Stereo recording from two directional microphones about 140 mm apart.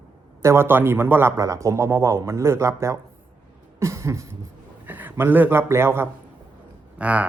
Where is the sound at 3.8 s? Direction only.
20° right (ahead or behind).